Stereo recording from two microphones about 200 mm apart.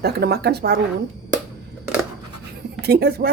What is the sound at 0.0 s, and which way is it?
Speech, 55° right (ahead or behind).